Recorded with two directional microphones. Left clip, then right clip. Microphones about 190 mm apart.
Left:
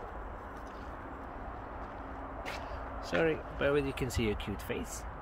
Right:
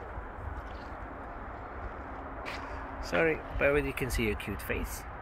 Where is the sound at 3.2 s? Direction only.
15° left (ahead or behind).